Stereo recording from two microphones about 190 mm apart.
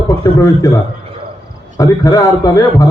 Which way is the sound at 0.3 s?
15° left (ahead or behind).